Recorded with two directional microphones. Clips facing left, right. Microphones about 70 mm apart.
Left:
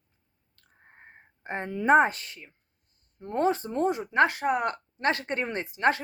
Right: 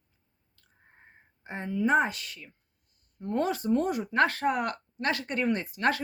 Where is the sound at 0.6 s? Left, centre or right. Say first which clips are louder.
Left 5 dB; left.